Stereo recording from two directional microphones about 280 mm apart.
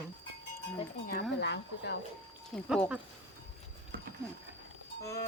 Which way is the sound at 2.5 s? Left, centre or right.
Centre.